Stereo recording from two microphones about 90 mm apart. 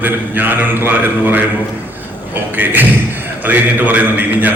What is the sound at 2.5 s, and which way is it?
A man's voice, 20° right (ahead or behind).